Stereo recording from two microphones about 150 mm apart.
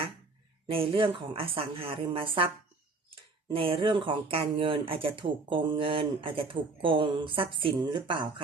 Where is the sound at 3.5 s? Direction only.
35° right (ahead or behind).